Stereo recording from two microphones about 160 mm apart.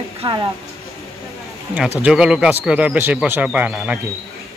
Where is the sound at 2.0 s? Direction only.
5° right (ahead or behind).